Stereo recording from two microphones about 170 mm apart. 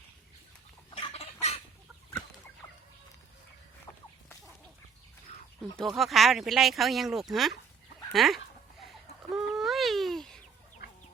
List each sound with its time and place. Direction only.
0.9 s chicken: 30° left (ahead or behind)
3.9 s chicken: 20° left (ahead or behind)
5.7 s speech: centre (ahead or behind)
8.8 s fowl: centre (ahead or behind)